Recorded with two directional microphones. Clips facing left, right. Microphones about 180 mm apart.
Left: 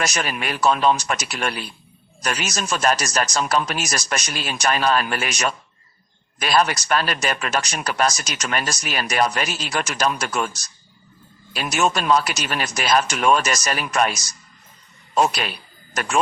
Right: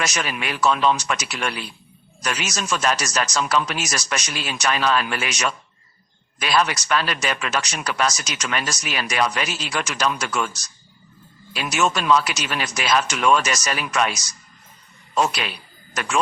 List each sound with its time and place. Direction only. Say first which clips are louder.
0.0 s speech: left 1 dB; 50° left (ahead or behind)